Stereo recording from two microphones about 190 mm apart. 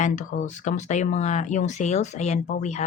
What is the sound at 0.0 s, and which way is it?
Speech, 40° left (ahead or behind).